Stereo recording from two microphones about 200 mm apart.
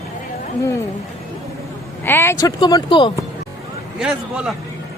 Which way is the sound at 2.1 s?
10° left (ahead or behind).